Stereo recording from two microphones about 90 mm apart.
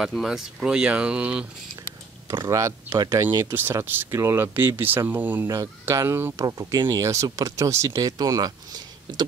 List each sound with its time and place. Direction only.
0.1 s speech: centre (ahead or behind)
2.5 s speech: 40° right (ahead or behind)
3.3 s speech: 25° right (ahead or behind)
5.5 s speech: 35° right (ahead or behind)
6.3 s speech: 40° right (ahead or behind)